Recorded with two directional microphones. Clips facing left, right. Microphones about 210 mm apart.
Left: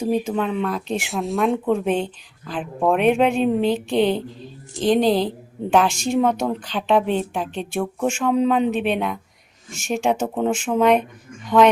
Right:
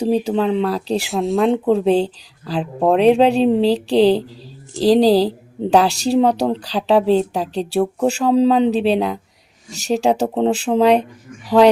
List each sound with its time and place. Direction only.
0.0 s speech: 35° right (ahead or behind)
1.1 s speech: centre (ahead or behind)
1.6 s speech: 35° right (ahead or behind)